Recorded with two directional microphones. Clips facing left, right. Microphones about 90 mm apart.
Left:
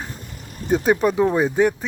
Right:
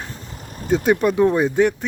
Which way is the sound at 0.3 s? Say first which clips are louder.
Right 1 dB; 40° right (ahead or behind).